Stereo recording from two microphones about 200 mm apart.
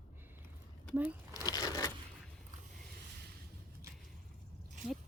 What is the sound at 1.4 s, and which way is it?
Crushing, 20° left (ahead or behind).